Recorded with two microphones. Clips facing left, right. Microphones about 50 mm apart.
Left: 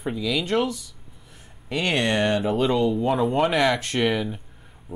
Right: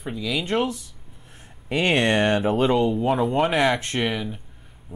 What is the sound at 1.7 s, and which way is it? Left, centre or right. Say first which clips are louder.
Speech: right 3 dB; right.